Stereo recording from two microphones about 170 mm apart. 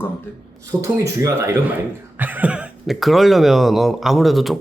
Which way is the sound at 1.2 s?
15° right (ahead or behind).